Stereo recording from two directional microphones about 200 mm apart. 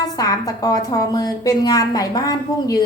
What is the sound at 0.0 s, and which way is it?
A woman's voice, 20° left (ahead or behind).